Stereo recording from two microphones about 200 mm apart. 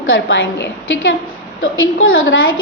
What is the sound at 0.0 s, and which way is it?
A woman's voice, 75° left (ahead or behind).